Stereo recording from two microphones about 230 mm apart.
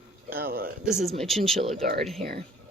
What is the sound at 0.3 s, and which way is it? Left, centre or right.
Speech, right.